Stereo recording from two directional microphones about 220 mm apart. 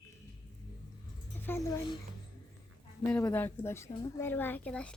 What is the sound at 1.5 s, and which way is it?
Speech, 10° left (ahead or behind).